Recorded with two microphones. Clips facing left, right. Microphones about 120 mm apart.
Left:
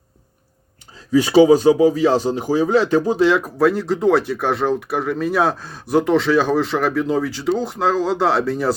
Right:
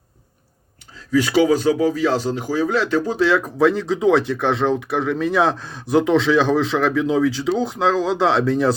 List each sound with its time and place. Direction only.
1.1 s speech: 20° left (ahead or behind)
3.6 s speech: 5° left (ahead or behind)